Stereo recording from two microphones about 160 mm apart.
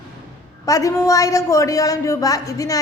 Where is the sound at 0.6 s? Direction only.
20° left (ahead or behind).